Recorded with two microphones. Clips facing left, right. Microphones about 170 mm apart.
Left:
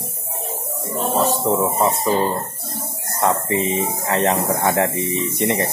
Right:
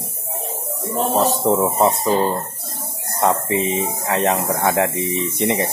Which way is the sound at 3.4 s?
15° right (ahead or behind).